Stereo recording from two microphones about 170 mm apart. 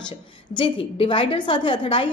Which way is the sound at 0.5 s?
30° left (ahead or behind).